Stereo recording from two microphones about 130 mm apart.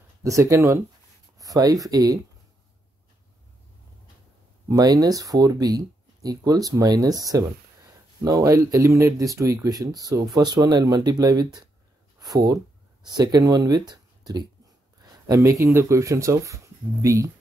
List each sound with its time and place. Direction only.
0.2 s speech: 25° right (ahead or behind)
4.6 s speech: 25° right (ahead or behind)